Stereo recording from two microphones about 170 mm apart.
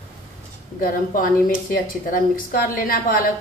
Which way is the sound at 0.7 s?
55° left (ahead or behind).